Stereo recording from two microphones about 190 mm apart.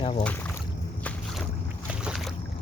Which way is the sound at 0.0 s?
35° left (ahead or behind).